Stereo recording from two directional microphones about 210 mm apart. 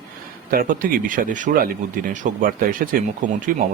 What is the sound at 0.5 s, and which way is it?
Speech, 45° right (ahead or behind).